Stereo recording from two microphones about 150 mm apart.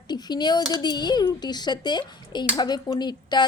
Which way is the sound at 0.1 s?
30° left (ahead or behind).